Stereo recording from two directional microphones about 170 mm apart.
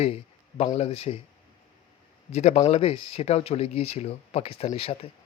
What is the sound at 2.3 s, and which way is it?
Speech, 40° left (ahead or behind).